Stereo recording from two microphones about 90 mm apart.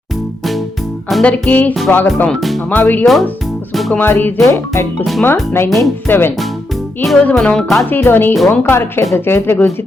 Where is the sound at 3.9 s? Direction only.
20° left (ahead or behind).